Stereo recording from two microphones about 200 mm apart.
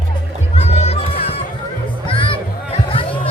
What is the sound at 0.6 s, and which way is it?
Music, 30° left (ahead or behind).